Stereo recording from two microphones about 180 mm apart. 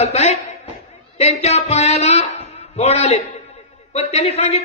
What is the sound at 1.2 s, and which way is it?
Speech, 40° left (ahead or behind).